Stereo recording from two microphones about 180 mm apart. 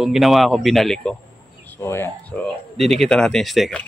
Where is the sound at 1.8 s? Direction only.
15° left (ahead or behind).